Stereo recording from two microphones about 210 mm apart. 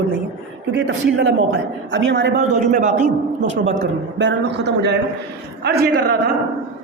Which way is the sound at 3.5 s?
65° right (ahead or behind).